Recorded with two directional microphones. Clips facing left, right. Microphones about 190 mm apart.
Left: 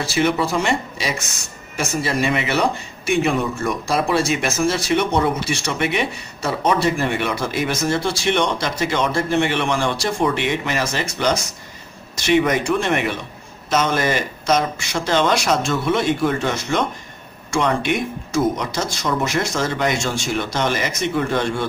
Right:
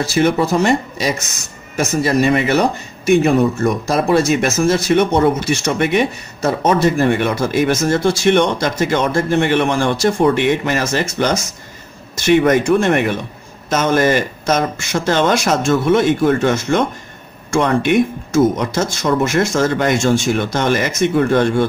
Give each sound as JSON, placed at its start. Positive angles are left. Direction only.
{"t": 0.0, "sound": "a man's voice", "side_deg": -45}